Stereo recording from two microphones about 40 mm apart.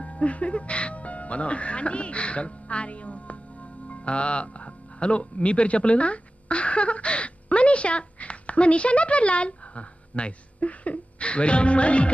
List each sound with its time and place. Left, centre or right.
0.0 s music: left